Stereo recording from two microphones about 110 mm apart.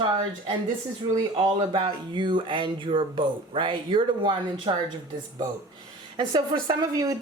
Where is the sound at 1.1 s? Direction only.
35° right (ahead or behind).